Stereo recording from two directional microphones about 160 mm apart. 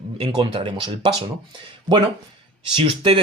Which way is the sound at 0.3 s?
30° right (ahead or behind).